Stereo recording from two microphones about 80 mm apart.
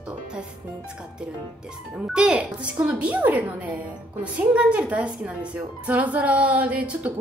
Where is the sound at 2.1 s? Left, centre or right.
Centre.